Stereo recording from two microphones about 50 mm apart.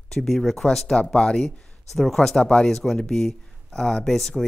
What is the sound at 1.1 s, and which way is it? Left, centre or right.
Speech, centre.